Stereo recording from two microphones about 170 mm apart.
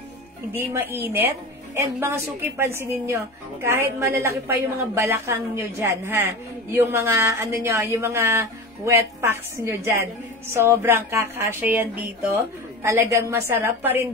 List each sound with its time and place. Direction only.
0.6 s speech: 10° right (ahead or behind)